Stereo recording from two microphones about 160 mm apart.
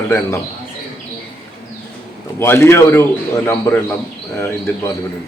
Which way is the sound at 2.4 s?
15° left (ahead or behind).